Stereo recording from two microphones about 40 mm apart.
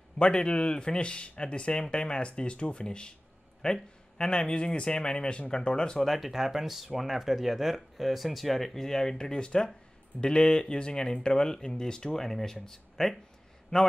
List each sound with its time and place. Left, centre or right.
0.2 s speech: left
5.9 s speech: centre
13.7 s speech: centre